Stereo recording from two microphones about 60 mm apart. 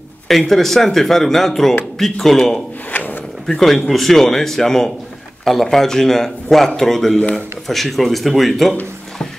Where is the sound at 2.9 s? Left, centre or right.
Left.